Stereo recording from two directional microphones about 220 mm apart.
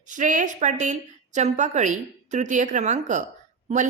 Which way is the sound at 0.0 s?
35° right (ahead or behind).